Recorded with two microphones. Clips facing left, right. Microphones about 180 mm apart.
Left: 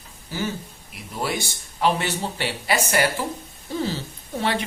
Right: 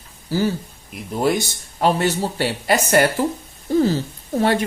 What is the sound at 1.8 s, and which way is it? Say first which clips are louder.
Speech: right 4 dB; 40° right (ahead or behind).